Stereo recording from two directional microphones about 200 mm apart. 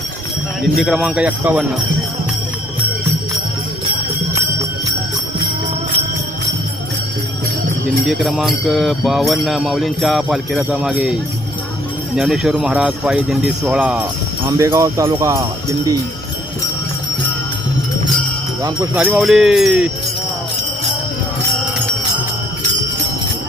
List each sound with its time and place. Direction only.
0.6 s jingle bell: centre (ahead or behind)
8.0 s jingle bell: centre (ahead or behind)
14.4 s speech: 15° right (ahead or behind)
18.9 s jingle bell: 5° right (ahead or behind)